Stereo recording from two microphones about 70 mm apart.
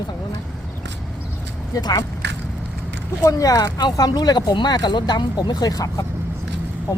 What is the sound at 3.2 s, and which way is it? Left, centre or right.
Speech, left.